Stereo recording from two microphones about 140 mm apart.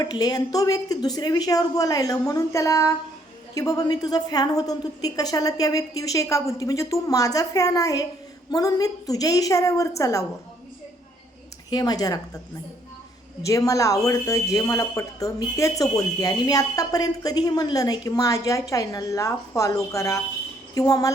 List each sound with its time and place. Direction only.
0.0 s speech: 30° left (ahead or behind)
11.7 s speech: 30° left (ahead or behind)
13.4 s speech: 25° left (ahead or behind)